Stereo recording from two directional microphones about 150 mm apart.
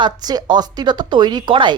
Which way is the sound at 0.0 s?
30° right (ahead or behind).